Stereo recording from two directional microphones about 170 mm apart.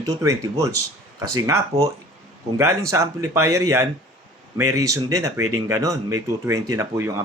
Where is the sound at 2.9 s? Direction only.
15° right (ahead or behind).